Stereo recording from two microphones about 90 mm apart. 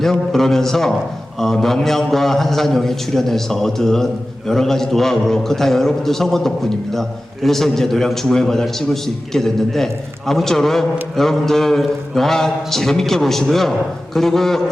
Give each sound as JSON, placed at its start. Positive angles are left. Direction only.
{"t": 0.0, "sound": "a man's voice", "side_deg": 5}